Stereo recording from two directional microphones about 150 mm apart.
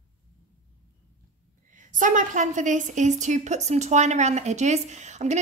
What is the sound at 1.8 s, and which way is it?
A woman's voice, 60° right (ahead or behind).